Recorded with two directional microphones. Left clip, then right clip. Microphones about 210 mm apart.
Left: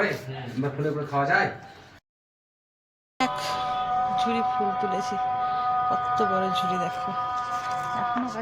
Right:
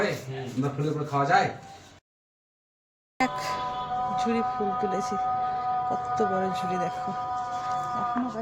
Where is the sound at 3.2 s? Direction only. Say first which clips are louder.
Left 1 dB; 10° right (ahead or behind).